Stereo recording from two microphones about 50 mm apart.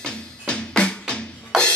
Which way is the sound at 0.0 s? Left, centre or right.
Centre.